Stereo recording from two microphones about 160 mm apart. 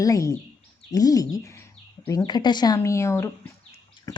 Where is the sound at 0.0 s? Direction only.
20° left (ahead or behind).